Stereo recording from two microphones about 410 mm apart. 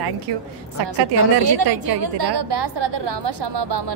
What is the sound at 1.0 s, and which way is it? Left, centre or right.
A woman's voice, right.